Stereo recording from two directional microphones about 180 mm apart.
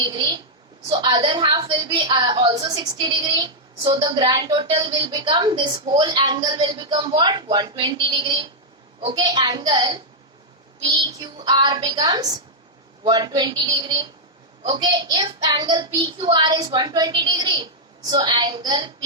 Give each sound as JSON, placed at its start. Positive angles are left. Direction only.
{"t": 0.9, "sound": "a woman's voice", "side_deg": -25}